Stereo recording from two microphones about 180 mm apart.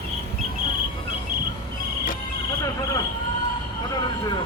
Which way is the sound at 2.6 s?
20° left (ahead or behind).